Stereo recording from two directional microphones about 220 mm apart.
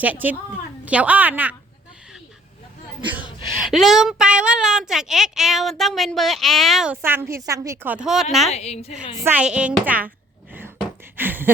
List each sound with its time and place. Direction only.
0.0 s speech: 5° right (ahead or behind)
3.6 s a woman's voice: centre (ahead or behind)
8.4 s a woman's voice: 30° left (ahead or behind)
9.2 s speech: 5° right (ahead or behind)
11.2 s a sound: 10° right (ahead or behind)